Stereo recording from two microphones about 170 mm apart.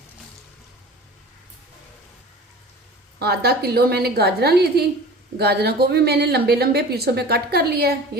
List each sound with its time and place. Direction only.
3.2 s speech: 70° right (ahead or behind)